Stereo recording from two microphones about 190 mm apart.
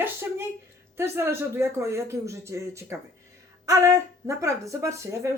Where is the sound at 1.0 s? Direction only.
15° right (ahead or behind).